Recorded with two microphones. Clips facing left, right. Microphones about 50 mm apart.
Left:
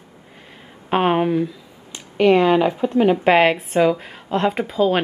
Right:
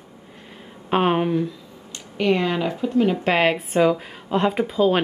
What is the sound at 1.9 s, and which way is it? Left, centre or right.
Speech, centre.